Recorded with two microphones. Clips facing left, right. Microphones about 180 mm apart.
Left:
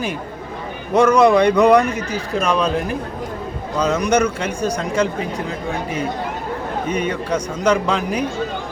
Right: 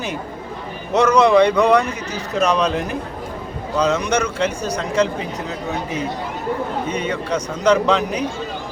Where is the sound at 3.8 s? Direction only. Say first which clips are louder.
Left 2 dB; 10° left (ahead or behind).